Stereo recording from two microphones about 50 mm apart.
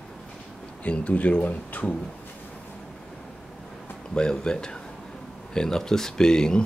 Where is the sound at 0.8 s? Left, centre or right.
Left.